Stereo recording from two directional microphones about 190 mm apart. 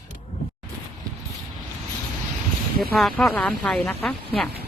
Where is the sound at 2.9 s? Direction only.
Centre (ahead or behind).